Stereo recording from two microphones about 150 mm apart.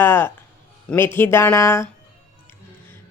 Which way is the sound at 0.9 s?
15° left (ahead or behind).